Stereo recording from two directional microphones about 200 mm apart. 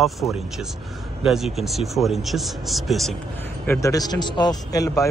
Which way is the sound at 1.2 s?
Centre (ahead or behind).